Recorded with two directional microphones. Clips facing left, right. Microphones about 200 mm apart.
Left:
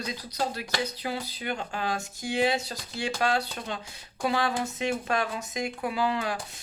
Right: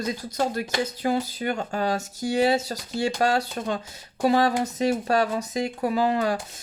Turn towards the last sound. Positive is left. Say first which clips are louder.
# right 6 dB
turn(degrees=-45)  # may be behind; listen again after turning